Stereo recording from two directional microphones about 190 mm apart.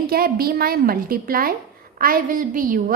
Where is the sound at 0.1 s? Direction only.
50° right (ahead or behind).